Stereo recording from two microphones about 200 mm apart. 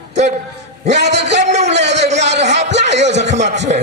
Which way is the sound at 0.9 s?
55° right (ahead or behind).